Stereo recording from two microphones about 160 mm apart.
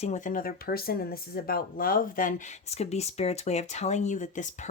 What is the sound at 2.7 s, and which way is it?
Speech, 40° left (ahead or behind).